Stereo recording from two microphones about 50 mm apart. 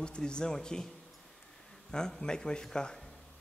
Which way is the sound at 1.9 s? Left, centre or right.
Centre.